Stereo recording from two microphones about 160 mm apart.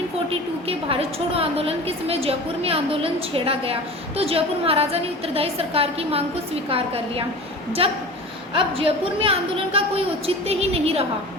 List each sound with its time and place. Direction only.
0.3 s a woman's voice: 35° right (ahead or behind)